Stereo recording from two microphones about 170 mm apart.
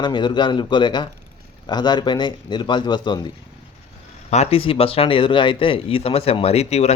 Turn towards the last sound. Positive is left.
turn(degrees=40)  # may be behind; listen again after turning